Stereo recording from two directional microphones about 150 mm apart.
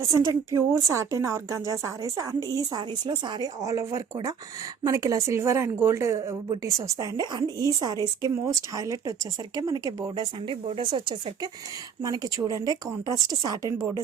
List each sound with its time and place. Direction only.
0.0 s speech: 25° right (ahead or behind)